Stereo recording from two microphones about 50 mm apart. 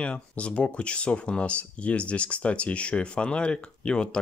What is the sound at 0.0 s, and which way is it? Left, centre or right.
Speech, left.